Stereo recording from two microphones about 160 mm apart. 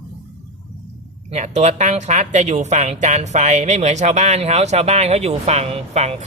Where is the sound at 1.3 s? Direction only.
45° right (ahead or behind).